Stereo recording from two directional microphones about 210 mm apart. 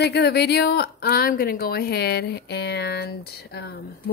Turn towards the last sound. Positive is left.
turn(degrees=50)  # may be behind; listen again after turning